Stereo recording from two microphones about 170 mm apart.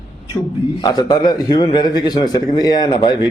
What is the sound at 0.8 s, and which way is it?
A man's voice, 25° left (ahead or behind).